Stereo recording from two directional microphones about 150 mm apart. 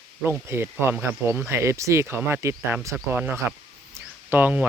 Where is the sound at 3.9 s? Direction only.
10° right (ahead or behind).